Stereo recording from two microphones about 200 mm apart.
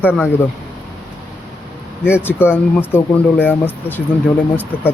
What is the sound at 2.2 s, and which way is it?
Speech, 10° left (ahead or behind).